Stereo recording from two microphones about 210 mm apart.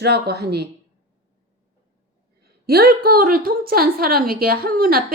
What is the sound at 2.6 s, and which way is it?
A woman's voice, 45° right (ahead or behind).